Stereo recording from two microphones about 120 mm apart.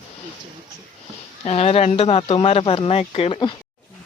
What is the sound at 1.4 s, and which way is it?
Speech, 60° left (ahead or behind).